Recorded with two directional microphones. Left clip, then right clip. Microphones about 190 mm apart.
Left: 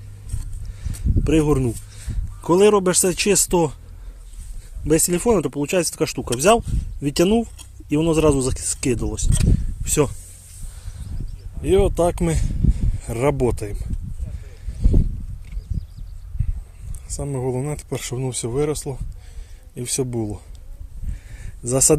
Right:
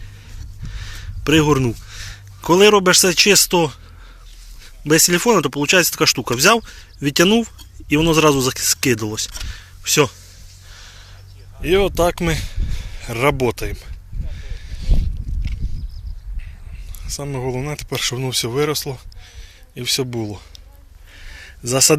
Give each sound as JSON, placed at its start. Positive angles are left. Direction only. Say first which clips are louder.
{"t": 0.7, "sound": "speech", "louder": "left 3 dB", "side_deg": 0}
{"t": 10.7, "sound": "a sound", "louder": "right 8 dB", "side_deg": 0}
{"t": 11.6, "sound": "speech", "louder": "right 2 dB", "side_deg": 10}
{"t": 17.1, "sound": "speech", "louder": "right 1 dB", "side_deg": 15}
{"t": 17.8, "sound": "speech", "louder": "right 5 dB", "side_deg": 5}
{"t": 21.2, "sound": "a sound", "louder": "right 9 dB", "side_deg": 10}
{"t": 21.7, "sound": "speech", "louder": "right 3 dB", "side_deg": -5}